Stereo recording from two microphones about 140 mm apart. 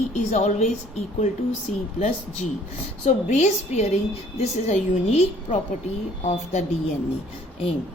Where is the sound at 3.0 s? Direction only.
55° left (ahead or behind).